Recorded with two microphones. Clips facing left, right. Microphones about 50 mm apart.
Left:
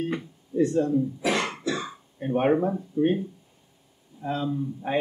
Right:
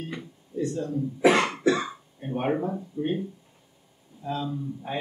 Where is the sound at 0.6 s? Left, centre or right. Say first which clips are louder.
Left 6 dB; left.